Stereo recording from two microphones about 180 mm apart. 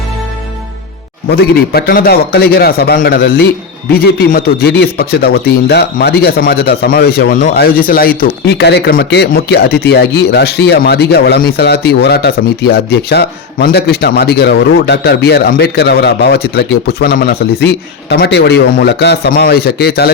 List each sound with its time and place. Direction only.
1.3 s speech: 60° left (ahead or behind)
8.2 s speech: 65° left (ahead or behind)
17.6 s speech: 65° left (ahead or behind)